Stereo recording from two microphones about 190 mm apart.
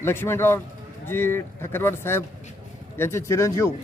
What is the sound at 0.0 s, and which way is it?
A man's voice, 10° left (ahead or behind).